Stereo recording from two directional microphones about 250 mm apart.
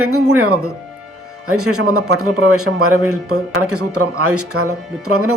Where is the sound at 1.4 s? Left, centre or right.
Right.